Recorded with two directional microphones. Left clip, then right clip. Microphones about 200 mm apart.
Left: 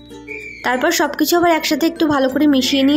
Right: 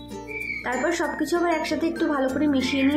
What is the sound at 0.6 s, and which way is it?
Speech, 45° left (ahead or behind).